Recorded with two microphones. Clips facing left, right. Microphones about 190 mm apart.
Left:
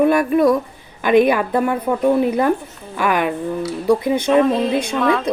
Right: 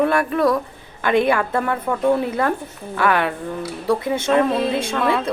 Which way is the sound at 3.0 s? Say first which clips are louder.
Left 1 dB; 15° left (ahead or behind).